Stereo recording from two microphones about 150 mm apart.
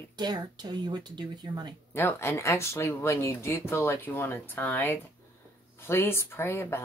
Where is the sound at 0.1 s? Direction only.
30° right (ahead or behind).